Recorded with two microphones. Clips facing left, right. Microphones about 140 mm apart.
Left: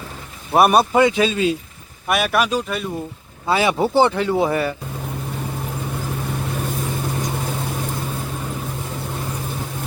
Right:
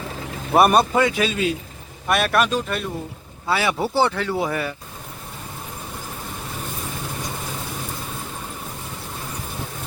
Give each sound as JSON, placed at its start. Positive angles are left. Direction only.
{"t": 0.5, "sound": "speech", "side_deg": 5}
{"t": 0.9, "sound": "speech", "side_deg": 25}
{"t": 2.0, "sound": "speech", "side_deg": 5}
{"t": 3.4, "sound": "speech", "side_deg": 20}